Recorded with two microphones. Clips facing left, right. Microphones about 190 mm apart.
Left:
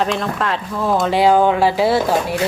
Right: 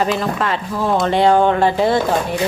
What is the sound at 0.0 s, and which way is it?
A woman's voice, centre (ahead or behind).